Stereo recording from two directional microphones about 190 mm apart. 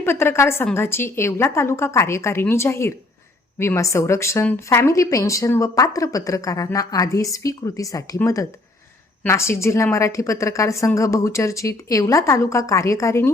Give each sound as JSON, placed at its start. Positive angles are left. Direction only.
{"t": 0.0, "sound": "speech", "side_deg": 15}